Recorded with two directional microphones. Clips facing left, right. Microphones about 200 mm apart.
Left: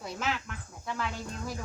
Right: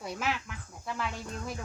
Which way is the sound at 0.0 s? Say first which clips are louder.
Even; 5° right (ahead or behind).